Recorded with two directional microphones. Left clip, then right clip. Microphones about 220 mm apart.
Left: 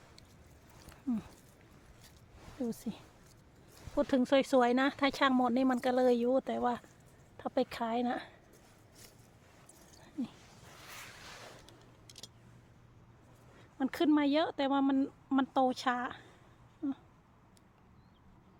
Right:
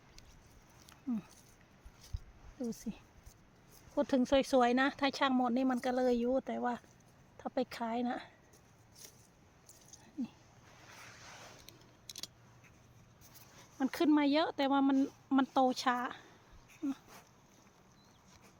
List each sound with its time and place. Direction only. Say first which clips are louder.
2.6 s speech: left 3 dB; 20° left (ahead or behind)
3.9 s speech: left 2 dB; 15° left (ahead or behind)
13.7 s speech: left 1 dB; centre (ahead or behind)